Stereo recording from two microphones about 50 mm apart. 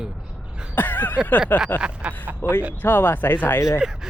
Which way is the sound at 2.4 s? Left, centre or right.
Left.